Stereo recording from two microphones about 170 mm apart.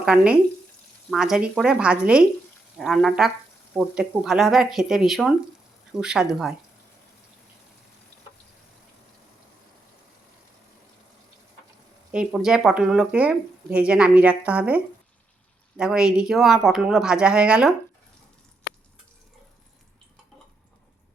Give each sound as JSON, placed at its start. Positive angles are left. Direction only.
{"t": 0.0, "sound": "speech", "side_deg": -5}
{"t": 12.1, "sound": "speech", "side_deg": -5}
{"t": 15.8, "sound": "speech", "side_deg": -5}